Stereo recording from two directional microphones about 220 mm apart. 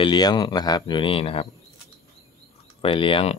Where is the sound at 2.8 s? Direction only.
25° left (ahead or behind).